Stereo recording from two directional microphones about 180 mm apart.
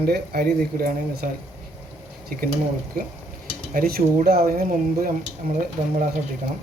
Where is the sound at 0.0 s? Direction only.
60° right (ahead or behind).